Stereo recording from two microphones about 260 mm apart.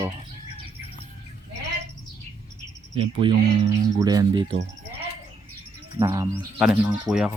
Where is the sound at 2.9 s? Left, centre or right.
Centre.